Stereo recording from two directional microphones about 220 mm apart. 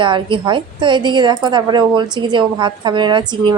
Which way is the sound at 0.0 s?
20° right (ahead or behind).